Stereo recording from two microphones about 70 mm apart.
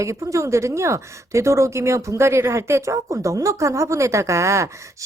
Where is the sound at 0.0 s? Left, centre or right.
Right.